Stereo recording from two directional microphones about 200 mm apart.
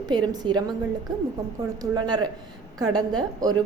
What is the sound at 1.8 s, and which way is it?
A woman's voice, 20° right (ahead or behind).